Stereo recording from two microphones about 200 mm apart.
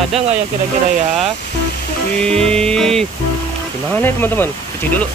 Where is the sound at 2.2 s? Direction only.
5° left (ahead or behind).